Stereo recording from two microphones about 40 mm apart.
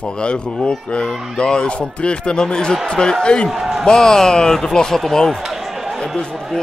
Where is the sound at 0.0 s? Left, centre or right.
Left.